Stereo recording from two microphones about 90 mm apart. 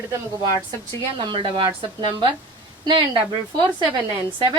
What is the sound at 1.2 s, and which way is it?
A woman's voice, 65° right (ahead or behind).